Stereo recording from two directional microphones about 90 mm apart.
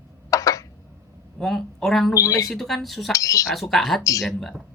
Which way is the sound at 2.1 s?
35° left (ahead or behind).